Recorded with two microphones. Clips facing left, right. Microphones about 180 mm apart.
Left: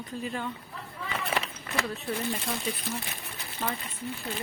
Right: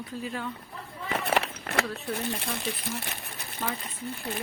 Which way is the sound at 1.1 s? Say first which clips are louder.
Right 5 dB; 70° right (ahead or behind).